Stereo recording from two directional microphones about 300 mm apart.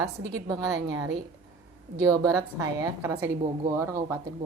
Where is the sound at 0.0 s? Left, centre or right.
Centre.